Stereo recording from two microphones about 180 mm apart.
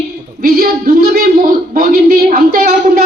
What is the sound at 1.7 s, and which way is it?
A woman's voice, 55° right (ahead or behind).